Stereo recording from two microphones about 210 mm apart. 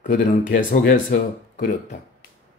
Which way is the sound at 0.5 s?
45° left (ahead or behind).